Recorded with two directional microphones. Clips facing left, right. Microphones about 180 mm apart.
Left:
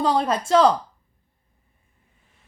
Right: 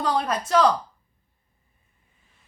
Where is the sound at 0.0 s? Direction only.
30° left (ahead or behind).